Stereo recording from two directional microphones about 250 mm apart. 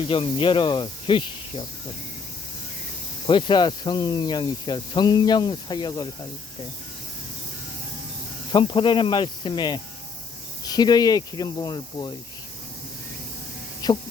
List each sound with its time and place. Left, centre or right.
0.1 s snake: left
3.2 s speech: centre
8.5 s snake: centre
10.7 s speech: centre
13.8 s speech: centre